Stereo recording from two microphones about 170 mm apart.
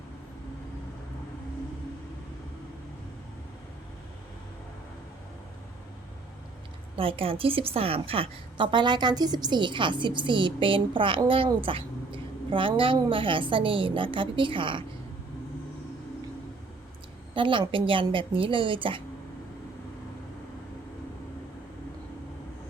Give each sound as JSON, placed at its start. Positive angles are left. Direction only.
{"t": 6.9, "sound": "a woman's voice", "side_deg": -35}
{"t": 17.3, "sound": "a woman's voice", "side_deg": -30}